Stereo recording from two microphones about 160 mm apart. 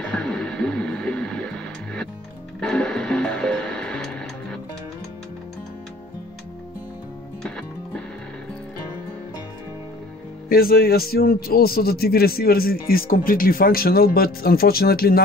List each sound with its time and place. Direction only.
0.0 s music: 5° left (ahead or behind)
7.4 s music: 5° left (ahead or behind)
10.5 s a man's voice: 70° left (ahead or behind)